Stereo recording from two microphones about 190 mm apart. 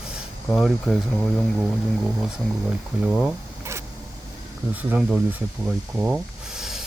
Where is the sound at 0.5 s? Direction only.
Centre (ahead or behind).